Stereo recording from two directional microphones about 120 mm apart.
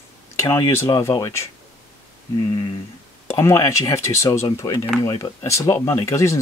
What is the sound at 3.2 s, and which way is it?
Speech, 20° left (ahead or behind).